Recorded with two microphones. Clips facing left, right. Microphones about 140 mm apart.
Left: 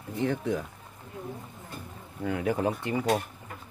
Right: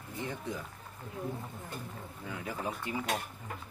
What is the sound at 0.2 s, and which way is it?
Speech, 70° left (ahead or behind).